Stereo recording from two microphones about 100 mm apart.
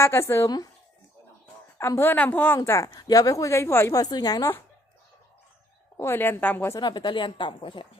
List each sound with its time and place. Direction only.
0.0 s a woman's voice: 25° left (ahead or behind)
2.0 s speech: 15° left (ahead or behind)
2.6 s a woman's voice: 30° left (ahead or behind)
3.9 s a woman's voice: 40° left (ahead or behind)
6.0 s a woman's voice: 25° left (ahead or behind)
6.7 s speech: 50° left (ahead or behind)